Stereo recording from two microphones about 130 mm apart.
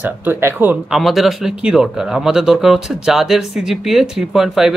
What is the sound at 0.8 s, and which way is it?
Speech, centre (ahead or behind).